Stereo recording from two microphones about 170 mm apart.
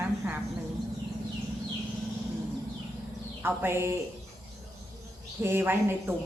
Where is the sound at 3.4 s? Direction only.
15° right (ahead or behind).